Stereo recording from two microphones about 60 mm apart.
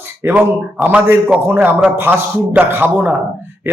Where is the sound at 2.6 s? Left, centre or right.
Centre.